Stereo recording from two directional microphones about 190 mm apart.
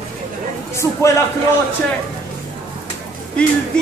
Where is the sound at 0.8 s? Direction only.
15° left (ahead or behind).